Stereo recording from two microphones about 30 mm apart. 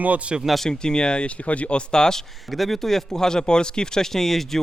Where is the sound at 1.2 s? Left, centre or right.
Left.